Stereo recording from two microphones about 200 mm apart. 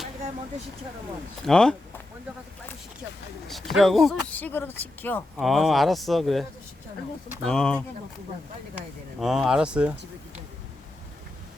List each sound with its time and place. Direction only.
1.5 s speech: 5° left (ahead or behind)
3.5 s speech: centre (ahead or behind)
7.4 s speech: 5° left (ahead or behind)
9.2 s speech: centre (ahead or behind)